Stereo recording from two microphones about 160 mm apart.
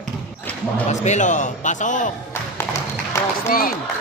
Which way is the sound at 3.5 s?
65° left (ahead or behind).